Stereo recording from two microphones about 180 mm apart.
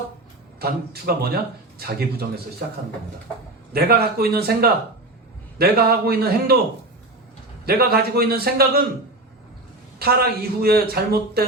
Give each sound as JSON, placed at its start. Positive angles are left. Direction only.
{"t": 0.6, "sound": "a man's voice", "side_deg": -60}
{"t": 3.7, "sound": "a man's voice", "side_deg": -60}
{"t": 7.6, "sound": "a man's voice", "side_deg": -60}
{"t": 10.0, "sound": "a man's voice", "side_deg": -60}